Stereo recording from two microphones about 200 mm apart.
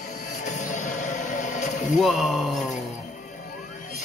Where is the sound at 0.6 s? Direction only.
35° left (ahead or behind).